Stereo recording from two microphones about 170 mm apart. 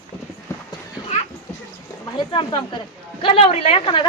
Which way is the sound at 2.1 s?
25° left (ahead or behind).